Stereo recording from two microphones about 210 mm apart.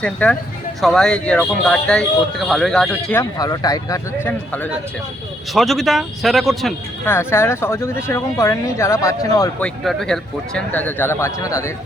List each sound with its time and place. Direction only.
0.0 s speech: 5° left (ahead or behind)
3.3 s speech: 20° left (ahead or behind); by 6.7 s centre (ahead or behind)
7.0 s speech: 10° left (ahead or behind)
9.6 s speech: centre (ahead or behind)